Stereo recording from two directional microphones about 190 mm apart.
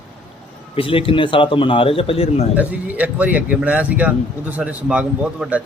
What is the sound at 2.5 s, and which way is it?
A man's voice, 10° right (ahead or behind).